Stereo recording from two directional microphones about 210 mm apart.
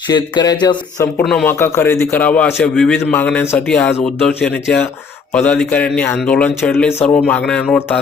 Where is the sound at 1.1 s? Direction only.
Centre (ahead or behind).